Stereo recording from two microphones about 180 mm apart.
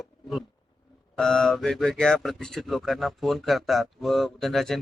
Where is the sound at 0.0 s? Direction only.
Centre (ahead or behind).